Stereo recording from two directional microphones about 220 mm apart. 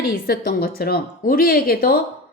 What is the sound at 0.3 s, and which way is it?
A woman's voice, 45° left (ahead or behind).